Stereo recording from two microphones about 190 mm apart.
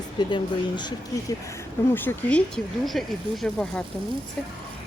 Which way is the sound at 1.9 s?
10° left (ahead or behind).